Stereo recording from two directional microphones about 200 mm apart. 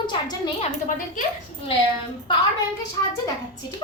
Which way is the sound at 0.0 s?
20° left (ahead or behind).